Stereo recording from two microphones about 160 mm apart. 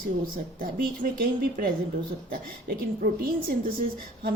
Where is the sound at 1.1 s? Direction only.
65° right (ahead or behind).